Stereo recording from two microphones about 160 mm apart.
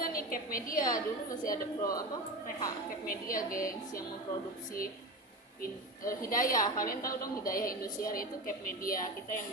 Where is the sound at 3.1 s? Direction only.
60° left (ahead or behind).